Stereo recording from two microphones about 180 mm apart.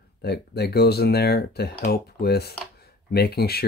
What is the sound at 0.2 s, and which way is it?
Speech, 60° left (ahead or behind).